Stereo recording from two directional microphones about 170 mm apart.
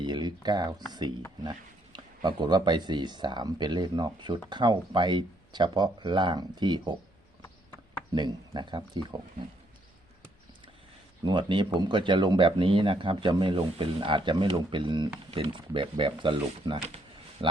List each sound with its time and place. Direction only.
0.0 s speech: 25° right (ahead or behind)
8.1 s speech: 25° right (ahead or behind)
11.2 s speech: 25° right (ahead or behind)
17.4 s a sound: 25° right (ahead or behind)